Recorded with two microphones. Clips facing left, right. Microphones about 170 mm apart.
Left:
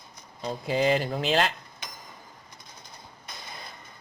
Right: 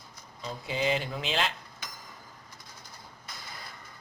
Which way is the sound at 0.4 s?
40° left (ahead or behind).